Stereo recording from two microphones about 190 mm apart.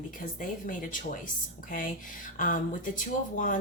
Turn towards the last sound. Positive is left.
turn(degrees=45)  # may be behind; listen again after turning